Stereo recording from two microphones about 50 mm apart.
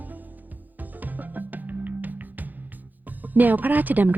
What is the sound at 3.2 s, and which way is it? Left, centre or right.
Speech, right.